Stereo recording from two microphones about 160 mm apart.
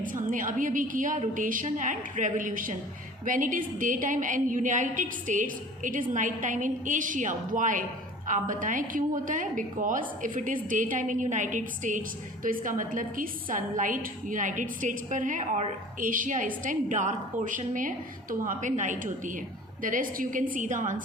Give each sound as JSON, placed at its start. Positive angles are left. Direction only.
{"t": 0.0, "sound": "a woman's voice", "side_deg": -55}